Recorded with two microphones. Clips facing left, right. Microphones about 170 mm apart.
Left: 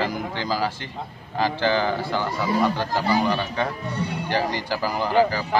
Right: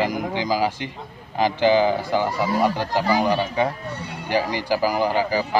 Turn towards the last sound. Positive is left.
turn(degrees=-15)  # may be behind; listen again after turning